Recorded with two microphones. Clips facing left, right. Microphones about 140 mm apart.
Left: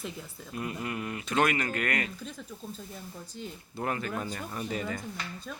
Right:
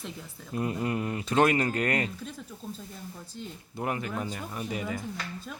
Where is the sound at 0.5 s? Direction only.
35° right (ahead or behind).